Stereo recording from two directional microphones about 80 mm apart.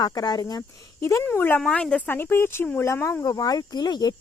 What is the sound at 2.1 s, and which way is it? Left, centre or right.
Speech, left.